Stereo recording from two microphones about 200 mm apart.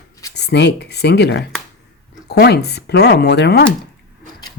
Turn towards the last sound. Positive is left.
turn(degrees=55)  # may be behind; listen again after turning